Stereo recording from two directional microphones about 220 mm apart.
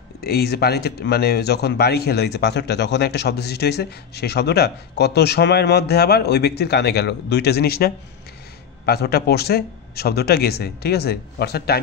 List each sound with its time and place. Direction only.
0.2 s speech: 45° left (ahead or behind)